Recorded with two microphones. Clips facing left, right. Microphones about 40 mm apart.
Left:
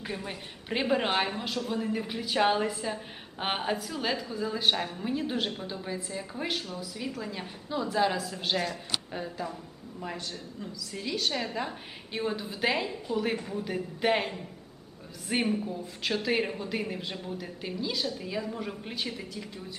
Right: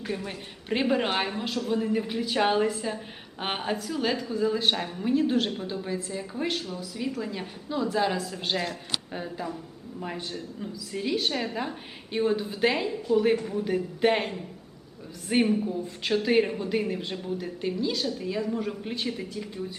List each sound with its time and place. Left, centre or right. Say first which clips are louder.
0.0 s a woman's voice: right 4 dB; centre
0.3 s speech: right 4 dB; centre